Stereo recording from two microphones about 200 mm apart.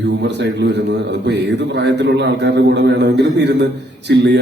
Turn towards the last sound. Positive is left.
turn(degrees=-60)  # may be behind; listen again after turning